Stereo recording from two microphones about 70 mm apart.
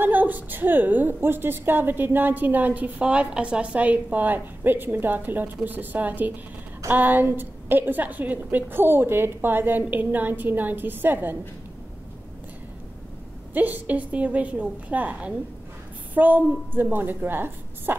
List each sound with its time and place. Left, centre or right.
0.0 s a woman's voice: right
13.5 s a woman's voice: right